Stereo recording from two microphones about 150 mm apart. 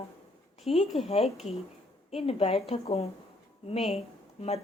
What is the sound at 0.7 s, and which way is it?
A woman's voice, 40° left (ahead or behind).